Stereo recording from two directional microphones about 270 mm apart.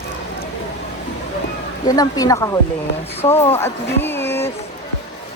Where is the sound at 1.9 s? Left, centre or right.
Centre.